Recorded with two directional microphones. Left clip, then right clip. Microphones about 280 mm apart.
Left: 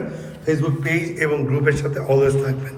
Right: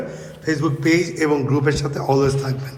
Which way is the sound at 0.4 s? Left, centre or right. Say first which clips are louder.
Even; right.